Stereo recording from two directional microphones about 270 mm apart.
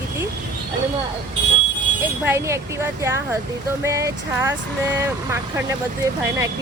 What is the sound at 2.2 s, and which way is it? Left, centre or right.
Speech, centre.